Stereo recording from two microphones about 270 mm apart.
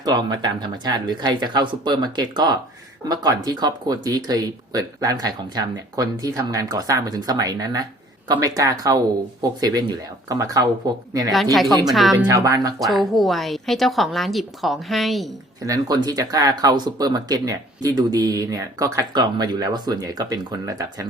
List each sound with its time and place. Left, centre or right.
0.0 s speech: centre
11.9 s a woman's voice: centre
12.1 s speech: centre
12.8 s a woman's voice: centre
15.6 s speech: centre